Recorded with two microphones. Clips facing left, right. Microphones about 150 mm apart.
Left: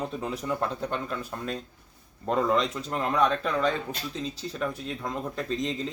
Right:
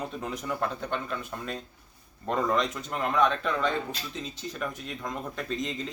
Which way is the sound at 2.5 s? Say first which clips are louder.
Left 2 dB; 30° left (ahead or behind).